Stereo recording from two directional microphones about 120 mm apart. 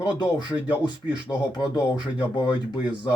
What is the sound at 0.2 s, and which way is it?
Speech, 40° left (ahead or behind).